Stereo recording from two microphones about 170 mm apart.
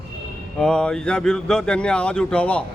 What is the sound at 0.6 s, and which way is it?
A man's voice, 5° left (ahead or behind).